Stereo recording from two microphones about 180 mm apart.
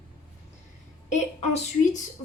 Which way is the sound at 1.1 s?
40° left (ahead or behind).